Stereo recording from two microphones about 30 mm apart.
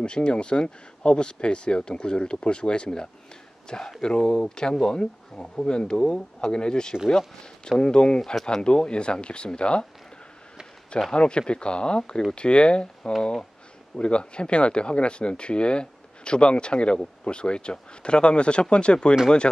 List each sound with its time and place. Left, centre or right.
0.0 s speech: left
8.4 s speech: centre
8.6 s speech: left
11.1 s speech: left